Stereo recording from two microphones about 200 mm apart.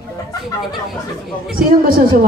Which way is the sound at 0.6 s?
Centre (ahead or behind).